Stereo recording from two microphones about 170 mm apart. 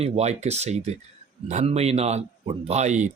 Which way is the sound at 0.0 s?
40° right (ahead or behind).